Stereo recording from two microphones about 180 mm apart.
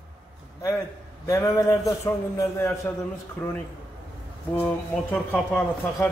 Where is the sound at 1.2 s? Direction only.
15° left (ahead or behind).